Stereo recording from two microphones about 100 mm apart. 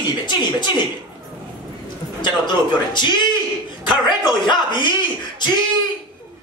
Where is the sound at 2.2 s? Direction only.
50° left (ahead or behind).